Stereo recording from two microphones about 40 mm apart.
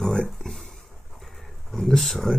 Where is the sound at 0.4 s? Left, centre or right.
Centre.